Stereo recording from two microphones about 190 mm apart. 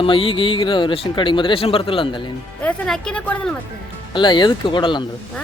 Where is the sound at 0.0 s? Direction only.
30° left (ahead or behind).